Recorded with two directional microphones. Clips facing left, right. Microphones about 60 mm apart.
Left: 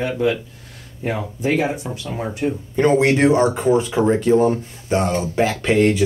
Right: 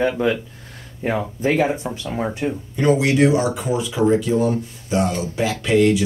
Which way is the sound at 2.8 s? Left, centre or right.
Left.